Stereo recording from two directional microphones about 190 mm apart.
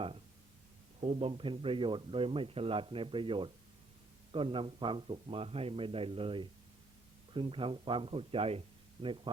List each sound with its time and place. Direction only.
1.0 s speech: 30° right (ahead or behind)